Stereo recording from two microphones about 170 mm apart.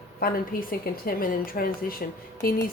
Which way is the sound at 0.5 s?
60° left (ahead or behind).